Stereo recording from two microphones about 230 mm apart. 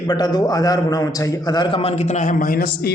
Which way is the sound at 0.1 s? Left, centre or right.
Centre.